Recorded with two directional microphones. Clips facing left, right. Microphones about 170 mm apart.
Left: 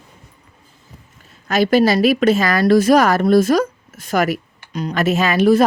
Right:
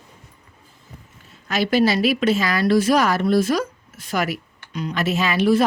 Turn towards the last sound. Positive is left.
turn(degrees=45)  # may be behind; listen again after turning